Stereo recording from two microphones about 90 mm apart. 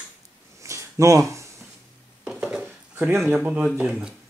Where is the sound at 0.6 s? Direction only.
35° right (ahead or behind).